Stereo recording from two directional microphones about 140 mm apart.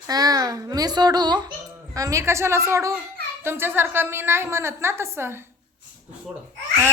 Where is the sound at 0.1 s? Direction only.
25° right (ahead or behind).